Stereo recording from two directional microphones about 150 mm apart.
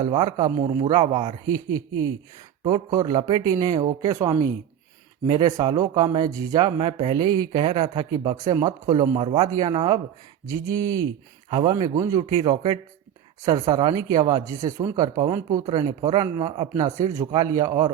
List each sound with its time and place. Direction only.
0.1 s a man's voice: 35° right (ahead or behind)
1.5 s a man's voice: 20° right (ahead or behind)
15.9 s a man's voice: 30° right (ahead or behind)